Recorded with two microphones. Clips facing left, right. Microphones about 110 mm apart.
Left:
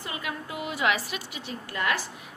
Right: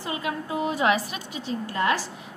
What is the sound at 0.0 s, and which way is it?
A woman's voice, 30° right (ahead or behind).